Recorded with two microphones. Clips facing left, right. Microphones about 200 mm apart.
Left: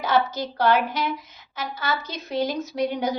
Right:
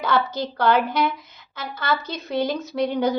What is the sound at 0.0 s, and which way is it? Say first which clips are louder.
A woman's voice: even; 60° right (ahead or behind).